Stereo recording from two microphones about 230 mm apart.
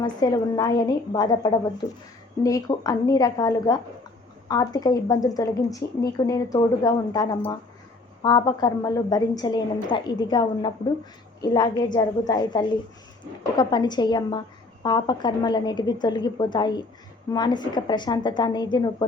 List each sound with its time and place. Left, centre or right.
0.0 s a woman's voice: centre